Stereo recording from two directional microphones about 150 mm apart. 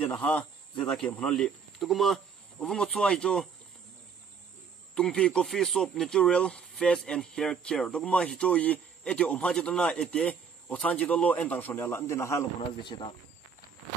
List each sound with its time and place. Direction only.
0.1 s speech: 10° left (ahead or behind)
4.9 s speech: 5° left (ahead or behind)
12.8 s speech: 30° left (ahead or behind)